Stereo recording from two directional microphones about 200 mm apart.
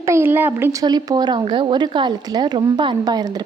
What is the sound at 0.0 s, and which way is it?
A woman's voice, 10° right (ahead or behind).